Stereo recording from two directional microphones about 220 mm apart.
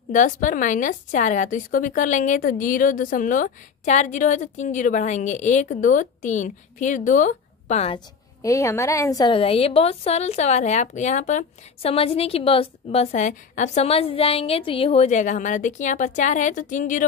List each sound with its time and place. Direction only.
0.1 s a woman's voice: 35° left (ahead or behind)
8.4 s a woman's voice: 15° left (ahead or behind); by 17.0 s 35° left (ahead or behind)